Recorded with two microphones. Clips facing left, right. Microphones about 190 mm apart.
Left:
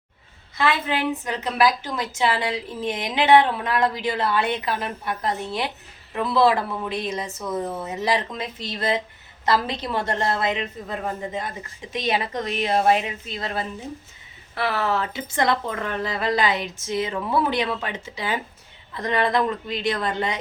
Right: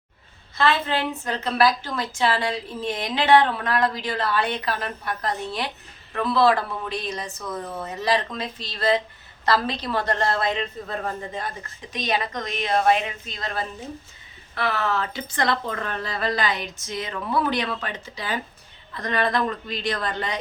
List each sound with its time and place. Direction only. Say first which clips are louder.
0.5 s a woman's voice: right 1 dB; 15° left (ahead or behind)